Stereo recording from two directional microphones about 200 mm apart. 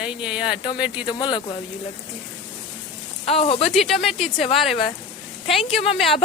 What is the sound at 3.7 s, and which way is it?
Speech, centre (ahead or behind).